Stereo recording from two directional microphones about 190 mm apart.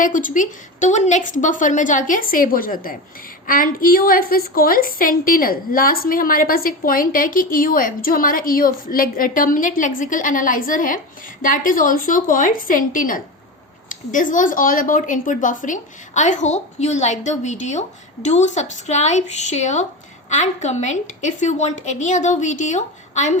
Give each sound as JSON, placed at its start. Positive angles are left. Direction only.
{"t": 0.0, "sound": "a woman's voice", "side_deg": 45}